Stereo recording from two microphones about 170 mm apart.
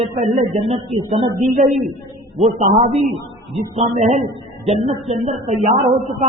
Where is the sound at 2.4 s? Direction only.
40° right (ahead or behind).